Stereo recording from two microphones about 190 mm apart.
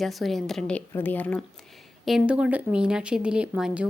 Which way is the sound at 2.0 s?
5° right (ahead or behind).